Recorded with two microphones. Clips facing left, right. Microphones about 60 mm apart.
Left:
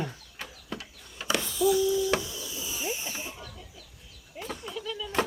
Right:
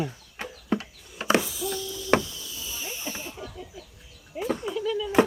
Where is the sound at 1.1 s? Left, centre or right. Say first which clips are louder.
Right 7 dB; right.